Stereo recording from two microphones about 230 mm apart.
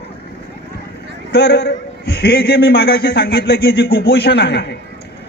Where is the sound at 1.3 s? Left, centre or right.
Left.